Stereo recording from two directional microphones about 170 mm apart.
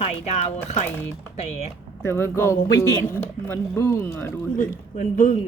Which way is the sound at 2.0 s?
15° left (ahead or behind).